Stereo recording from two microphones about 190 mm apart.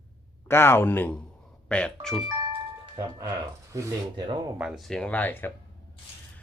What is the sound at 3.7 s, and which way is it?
Speech, 20° right (ahead or behind).